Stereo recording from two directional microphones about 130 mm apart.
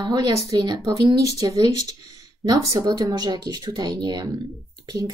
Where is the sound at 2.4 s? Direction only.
30° right (ahead or behind).